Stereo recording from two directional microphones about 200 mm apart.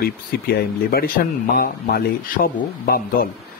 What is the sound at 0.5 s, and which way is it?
Speech, 50° left (ahead or behind).